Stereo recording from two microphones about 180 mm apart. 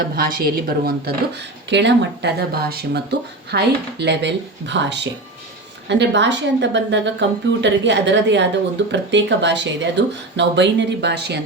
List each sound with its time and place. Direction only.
0.0 s a woman's voice: 55° right (ahead or behind)
1.7 s a woman's voice: 75° right (ahead or behind)